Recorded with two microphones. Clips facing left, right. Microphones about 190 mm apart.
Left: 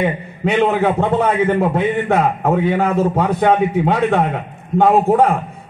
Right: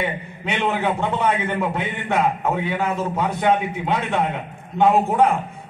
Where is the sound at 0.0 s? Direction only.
35° left (ahead or behind).